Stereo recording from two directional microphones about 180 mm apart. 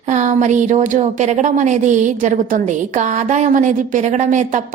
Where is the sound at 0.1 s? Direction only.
40° right (ahead or behind).